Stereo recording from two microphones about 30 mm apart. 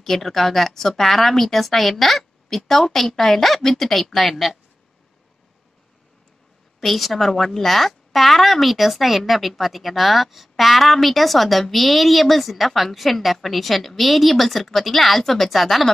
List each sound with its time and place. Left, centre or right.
0.0 s a woman's voice: centre
6.8 s a woman's voice: centre